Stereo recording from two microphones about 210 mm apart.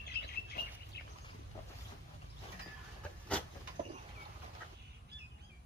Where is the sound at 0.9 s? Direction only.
50° left (ahead or behind).